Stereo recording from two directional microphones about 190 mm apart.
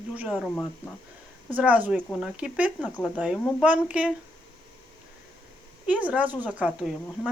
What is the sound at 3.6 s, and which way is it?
Speech, 5° right (ahead or behind).